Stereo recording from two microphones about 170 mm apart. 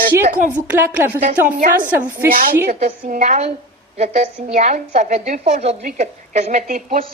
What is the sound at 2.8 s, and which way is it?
A woman's voice, 45° right (ahead or behind).